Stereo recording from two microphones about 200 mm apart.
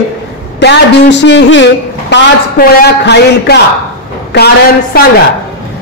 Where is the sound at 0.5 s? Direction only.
60° left (ahead or behind).